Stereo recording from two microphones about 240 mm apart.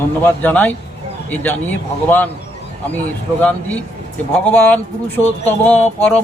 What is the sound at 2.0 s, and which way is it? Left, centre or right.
Mantra, centre.